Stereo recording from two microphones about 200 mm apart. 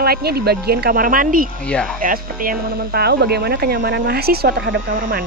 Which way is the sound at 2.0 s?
45° right (ahead or behind).